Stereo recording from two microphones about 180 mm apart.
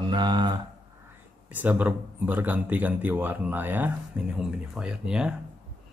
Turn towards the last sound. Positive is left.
turn(degrees=-5)  # may be behind; listen again after turning